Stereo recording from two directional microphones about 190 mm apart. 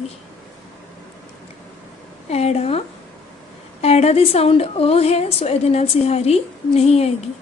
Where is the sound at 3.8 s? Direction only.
35° left (ahead or behind).